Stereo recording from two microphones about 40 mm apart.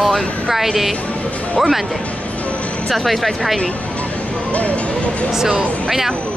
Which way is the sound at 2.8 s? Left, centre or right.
Centre.